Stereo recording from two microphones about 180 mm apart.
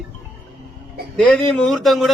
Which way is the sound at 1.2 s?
5° left (ahead or behind).